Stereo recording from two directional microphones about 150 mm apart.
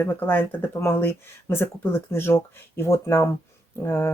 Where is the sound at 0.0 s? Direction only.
15° left (ahead or behind).